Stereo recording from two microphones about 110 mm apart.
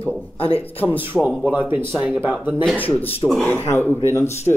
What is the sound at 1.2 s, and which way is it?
Speech, 5° right (ahead or behind).